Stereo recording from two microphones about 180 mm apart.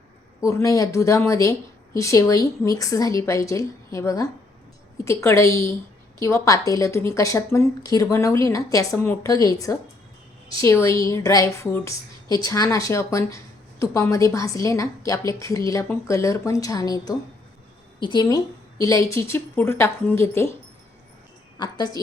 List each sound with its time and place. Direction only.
0.4 s a woman's voice: 15° left (ahead or behind)
21.6 s speech: 20° left (ahead or behind)